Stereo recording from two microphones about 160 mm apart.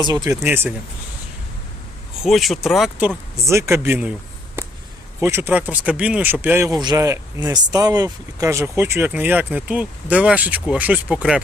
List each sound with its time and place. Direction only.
0.0 s speech: 25° right (ahead or behind)
0.4 s speech: 15° right (ahead or behind)
2.2 s speech: centre (ahead or behind)
3.4 s speech: 15° right (ahead or behind)
4.6 s a sound: 15° right (ahead or behind)
5.2 s speech: 15° right (ahead or behind)